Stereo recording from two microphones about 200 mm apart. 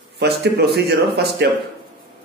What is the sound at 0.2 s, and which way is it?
Speech, 55° right (ahead or behind).